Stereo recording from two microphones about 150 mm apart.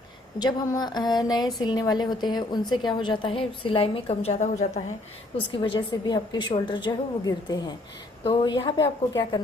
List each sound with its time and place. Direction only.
0.4 s a sound: 25° left (ahead or behind)
1.6 s a woman's voice: 30° left (ahead or behind); by 4.8 s 50° left (ahead or behind)
5.5 s a woman's voice: 30° left (ahead or behind)